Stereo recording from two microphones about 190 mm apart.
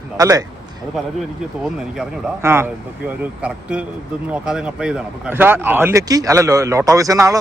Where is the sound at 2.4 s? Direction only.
15° right (ahead or behind).